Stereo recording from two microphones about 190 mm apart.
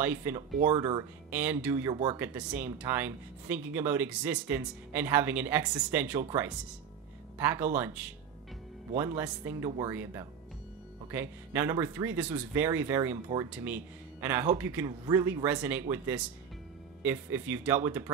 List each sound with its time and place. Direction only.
0.0 s speech: 10° right (ahead or behind)